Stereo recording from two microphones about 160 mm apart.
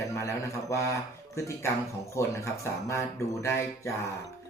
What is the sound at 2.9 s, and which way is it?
Speech, 15° left (ahead or behind).